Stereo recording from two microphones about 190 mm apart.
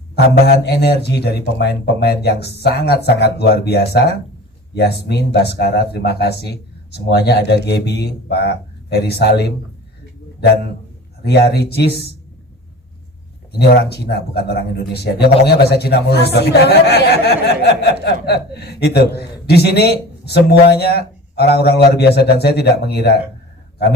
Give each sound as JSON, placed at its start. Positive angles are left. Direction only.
{"t": 0.4, "sound": "a man's voice", "side_deg": 60}
{"t": 11.2, "sound": "a man's voice", "side_deg": 60}
{"t": 13.6, "sound": "a man's voice", "side_deg": 60}